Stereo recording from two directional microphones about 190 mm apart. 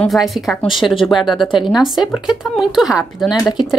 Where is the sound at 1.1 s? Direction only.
Centre (ahead or behind).